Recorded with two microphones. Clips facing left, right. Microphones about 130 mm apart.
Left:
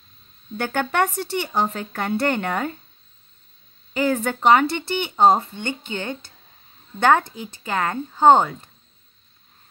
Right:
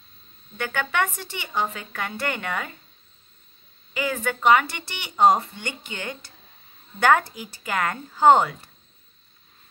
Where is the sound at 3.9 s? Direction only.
35° left (ahead or behind).